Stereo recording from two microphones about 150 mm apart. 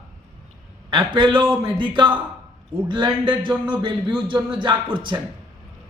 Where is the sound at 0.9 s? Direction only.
35° right (ahead or behind).